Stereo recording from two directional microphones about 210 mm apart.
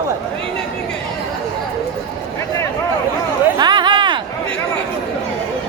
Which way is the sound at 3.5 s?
20° right (ahead or behind).